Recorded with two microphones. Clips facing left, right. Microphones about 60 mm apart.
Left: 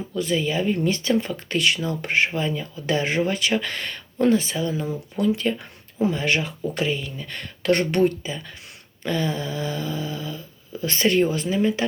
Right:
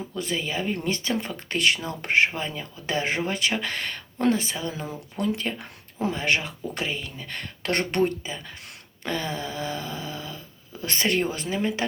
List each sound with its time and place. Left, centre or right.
0.2 s speech: right